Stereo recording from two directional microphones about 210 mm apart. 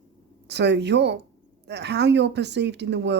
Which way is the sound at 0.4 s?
55° right (ahead or behind).